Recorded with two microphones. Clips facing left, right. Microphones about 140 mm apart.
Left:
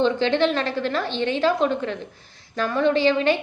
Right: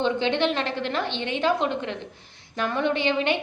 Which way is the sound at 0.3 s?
20° right (ahead or behind).